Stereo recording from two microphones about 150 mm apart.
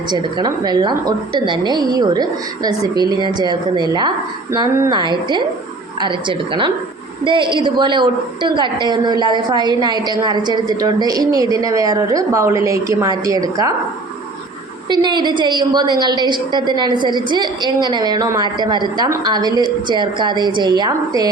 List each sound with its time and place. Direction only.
0.1 s a woman's voice: 30° right (ahead or behind)
14.8 s a woman's voice: 30° right (ahead or behind)